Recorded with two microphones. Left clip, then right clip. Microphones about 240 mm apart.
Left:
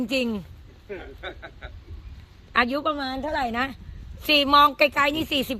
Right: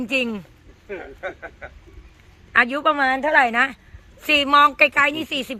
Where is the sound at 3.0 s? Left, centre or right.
Right.